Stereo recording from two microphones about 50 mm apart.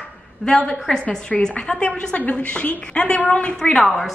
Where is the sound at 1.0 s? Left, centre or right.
Left.